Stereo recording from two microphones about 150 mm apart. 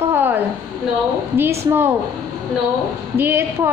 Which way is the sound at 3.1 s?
15° right (ahead or behind).